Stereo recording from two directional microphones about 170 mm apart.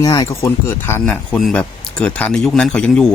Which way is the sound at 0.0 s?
20° left (ahead or behind).